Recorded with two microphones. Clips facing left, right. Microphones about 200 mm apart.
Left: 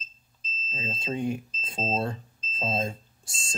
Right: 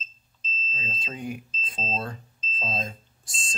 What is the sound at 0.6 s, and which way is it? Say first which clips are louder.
Speech: left 6 dB; 25° left (ahead or behind).